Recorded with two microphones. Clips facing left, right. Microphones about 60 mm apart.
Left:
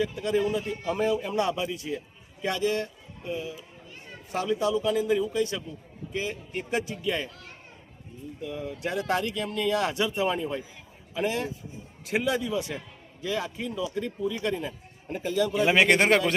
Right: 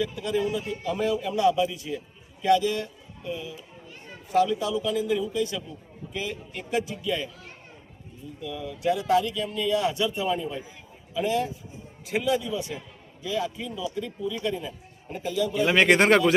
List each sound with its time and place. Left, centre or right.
0.0 s a man's voice: left
0.9 s speech: left
1.3 s a man's voice: left
4.3 s a man's voice: left
8.4 s speech: left
15.5 s speech: centre